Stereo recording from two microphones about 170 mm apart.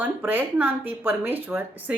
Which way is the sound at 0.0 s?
10° right (ahead or behind).